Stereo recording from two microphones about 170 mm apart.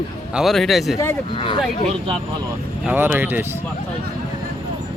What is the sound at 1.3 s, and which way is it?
Speech, 30° left (ahead or behind).